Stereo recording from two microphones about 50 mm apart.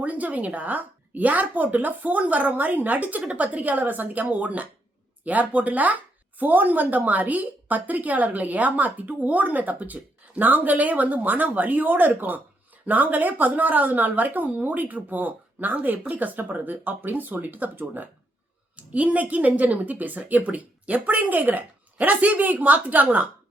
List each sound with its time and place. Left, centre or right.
0.0 s a woman's voice: right